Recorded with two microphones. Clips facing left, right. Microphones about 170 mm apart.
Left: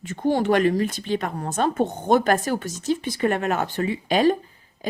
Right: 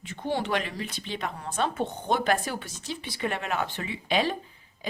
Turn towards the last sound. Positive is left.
turn(degrees=45)  # may be behind; listen again after turning